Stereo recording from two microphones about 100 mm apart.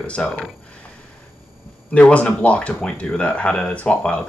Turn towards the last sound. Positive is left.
turn(degrees=10)  # may be behind; listen again after turning